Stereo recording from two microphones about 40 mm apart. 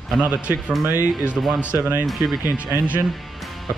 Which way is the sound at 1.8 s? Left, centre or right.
Right.